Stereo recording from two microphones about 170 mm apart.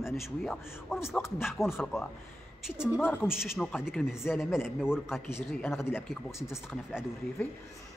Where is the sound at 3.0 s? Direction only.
15° left (ahead or behind).